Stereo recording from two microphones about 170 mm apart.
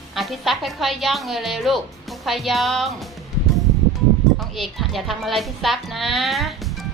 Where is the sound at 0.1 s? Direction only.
Centre (ahead or behind).